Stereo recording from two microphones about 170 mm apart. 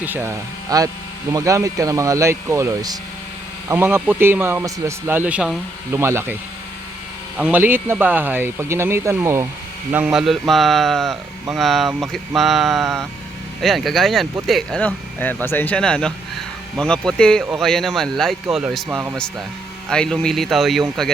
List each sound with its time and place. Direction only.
0.0 s speech: 10° right (ahead or behind)
7.3 s speech: 10° right (ahead or behind)
17.4 s speech: 5° right (ahead or behind)
19.9 s speech: 5° left (ahead or behind)